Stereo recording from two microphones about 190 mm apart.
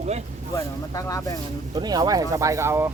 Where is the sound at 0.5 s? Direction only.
20° left (ahead or behind).